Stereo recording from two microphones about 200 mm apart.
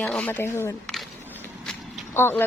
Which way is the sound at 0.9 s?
Centre (ahead or behind).